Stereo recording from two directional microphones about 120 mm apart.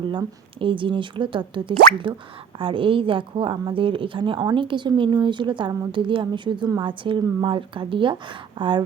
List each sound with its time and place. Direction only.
0.1 s a woman's voice: 40° right (ahead or behind)